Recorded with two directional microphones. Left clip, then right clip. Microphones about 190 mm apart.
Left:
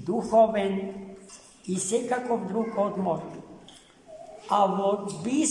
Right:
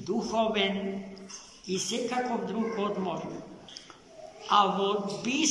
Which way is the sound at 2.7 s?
40° left (ahead or behind).